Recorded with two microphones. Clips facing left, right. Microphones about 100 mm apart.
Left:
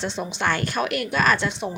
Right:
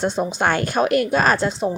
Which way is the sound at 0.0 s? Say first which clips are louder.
Right 6 dB; 45° right (ahead or behind).